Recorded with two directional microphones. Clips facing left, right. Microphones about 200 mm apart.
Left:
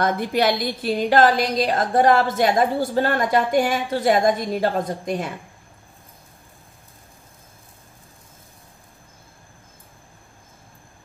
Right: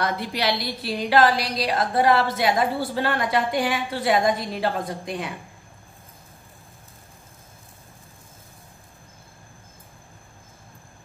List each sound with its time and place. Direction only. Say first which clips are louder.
0.0 s a woman's voice: left 5 dB; 50° left (ahead or behind)